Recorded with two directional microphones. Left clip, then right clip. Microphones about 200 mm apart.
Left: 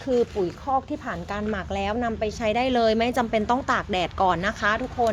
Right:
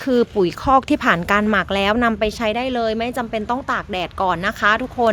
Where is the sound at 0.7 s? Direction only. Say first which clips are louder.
Right 14 dB; 50° right (ahead or behind); by 2.5 s 25° right (ahead or behind).